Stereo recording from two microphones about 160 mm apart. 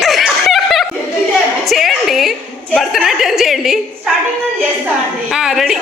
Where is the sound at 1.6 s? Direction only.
Centre (ahead or behind).